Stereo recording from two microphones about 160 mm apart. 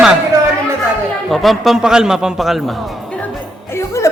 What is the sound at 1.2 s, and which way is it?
A man's voice, centre (ahead or behind).